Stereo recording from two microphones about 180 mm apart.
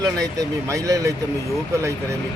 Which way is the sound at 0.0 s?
20° right (ahead or behind).